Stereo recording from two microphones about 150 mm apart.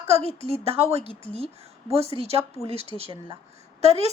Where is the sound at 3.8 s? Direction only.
45° right (ahead or behind).